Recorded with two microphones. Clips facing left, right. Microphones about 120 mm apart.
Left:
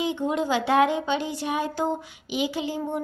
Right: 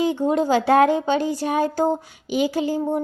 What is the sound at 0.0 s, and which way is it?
A woman's voice, 40° right (ahead or behind).